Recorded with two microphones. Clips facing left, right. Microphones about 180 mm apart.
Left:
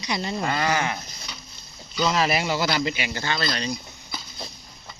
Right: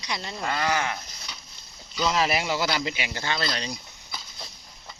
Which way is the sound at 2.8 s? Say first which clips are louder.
Left 4 dB; 15° right (ahead or behind).